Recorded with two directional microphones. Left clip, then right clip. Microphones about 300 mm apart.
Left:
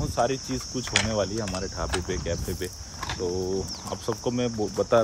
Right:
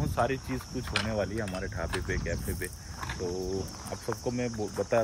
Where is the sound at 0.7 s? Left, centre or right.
Left.